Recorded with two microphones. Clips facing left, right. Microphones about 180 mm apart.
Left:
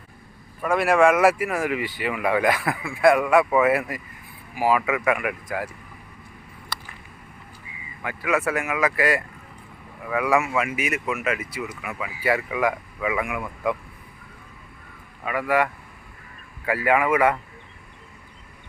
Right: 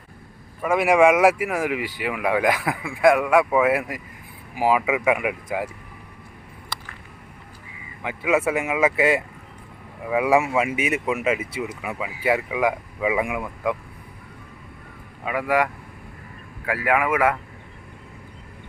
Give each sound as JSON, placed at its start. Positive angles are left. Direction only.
{"t": 0.6, "sound": "speech", "side_deg": -10}
{"t": 8.0, "sound": "speech", "side_deg": -20}
{"t": 11.9, "sound": "speech", "side_deg": -15}
{"t": 15.2, "sound": "speech", "side_deg": -10}